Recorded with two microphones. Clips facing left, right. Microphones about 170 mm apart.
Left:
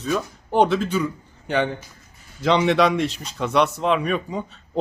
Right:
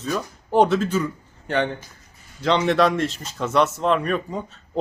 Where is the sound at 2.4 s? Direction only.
5° left (ahead or behind).